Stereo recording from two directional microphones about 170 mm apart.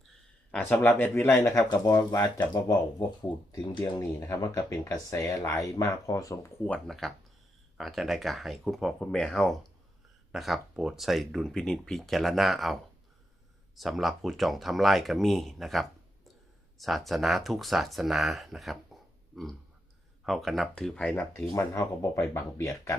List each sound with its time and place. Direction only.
0.5 s speech: 5° left (ahead or behind)
6.7 s speech: centre (ahead or behind)
21.5 s speech: 15° left (ahead or behind)